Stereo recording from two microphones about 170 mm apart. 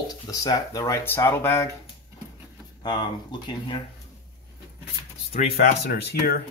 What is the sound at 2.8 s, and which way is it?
Speech, 25° left (ahead or behind).